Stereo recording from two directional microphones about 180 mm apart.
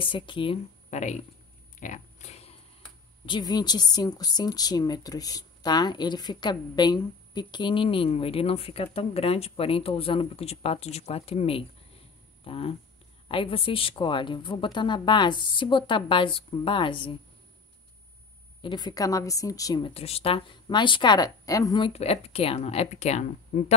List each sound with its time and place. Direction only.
0.0 s a woman's voice: 30° left (ahead or behind)
0.8 s speech: 40° left (ahead or behind)
1.8 s a sound: 40° left (ahead or behind)
3.3 s a woman's voice: 25° left (ahead or behind)
18.6 s a woman's voice: 25° left (ahead or behind)